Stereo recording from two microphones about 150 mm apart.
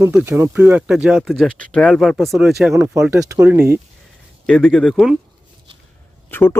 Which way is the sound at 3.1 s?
20° right (ahead or behind).